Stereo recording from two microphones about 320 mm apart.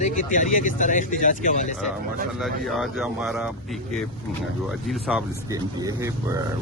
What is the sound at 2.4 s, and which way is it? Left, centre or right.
Speech, centre.